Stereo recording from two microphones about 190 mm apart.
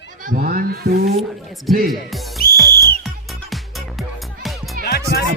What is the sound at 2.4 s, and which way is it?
Whistle, 50° left (ahead or behind).